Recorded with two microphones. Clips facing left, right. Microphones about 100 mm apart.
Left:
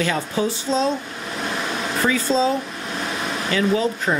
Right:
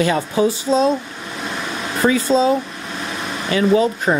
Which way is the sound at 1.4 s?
Centre (ahead or behind).